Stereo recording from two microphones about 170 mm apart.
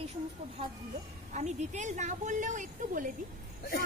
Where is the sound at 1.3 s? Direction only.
45° right (ahead or behind).